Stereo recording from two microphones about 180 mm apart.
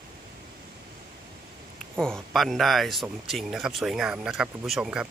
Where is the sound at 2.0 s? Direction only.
Centre (ahead or behind).